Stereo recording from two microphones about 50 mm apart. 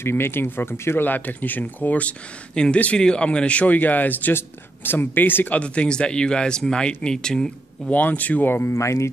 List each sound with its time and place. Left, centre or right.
0.0 s speech: left
1.0 s speech: left
2.5 s speech: centre; by 5.6 s left
5.6 s speech: left
7.9 s speech: left
8.5 s speech: left
8.7 s speech: left